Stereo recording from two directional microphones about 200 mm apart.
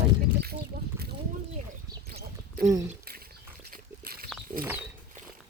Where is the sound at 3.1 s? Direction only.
50° right (ahead or behind).